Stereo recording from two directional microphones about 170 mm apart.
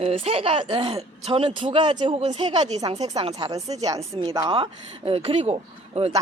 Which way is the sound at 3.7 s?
20° right (ahead or behind).